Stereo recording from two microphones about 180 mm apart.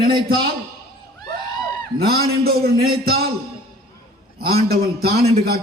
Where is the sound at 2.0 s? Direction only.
60° right (ahead or behind).